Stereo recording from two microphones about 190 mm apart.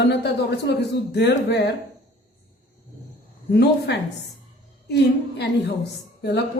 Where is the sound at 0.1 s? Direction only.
60° left (ahead or behind).